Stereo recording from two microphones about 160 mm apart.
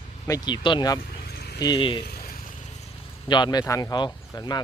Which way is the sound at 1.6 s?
30° left (ahead or behind).